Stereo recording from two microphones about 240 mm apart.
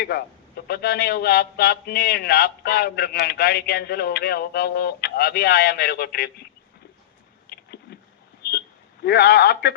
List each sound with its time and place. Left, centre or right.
0.0 s a man's voice: left
7.5 s a sound: left
9.0 s a man's voice: left